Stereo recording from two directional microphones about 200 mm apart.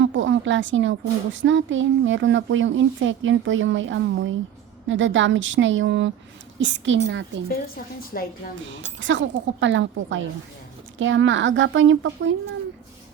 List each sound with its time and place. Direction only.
0.0 s a woman's voice: 70° right (ahead or behind)
8.1 s a woman's voice: 45° left (ahead or behind)
9.0 s a woman's voice: 65° right (ahead or behind)